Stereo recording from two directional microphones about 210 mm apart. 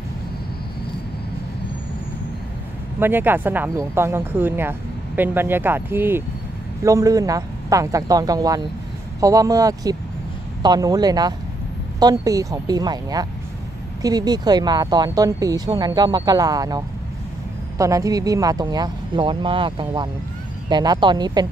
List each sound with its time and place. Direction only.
3.0 s a woman's voice: 10° right (ahead or behind)